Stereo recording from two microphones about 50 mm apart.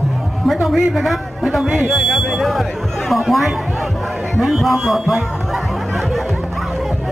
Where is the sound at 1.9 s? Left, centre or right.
Centre.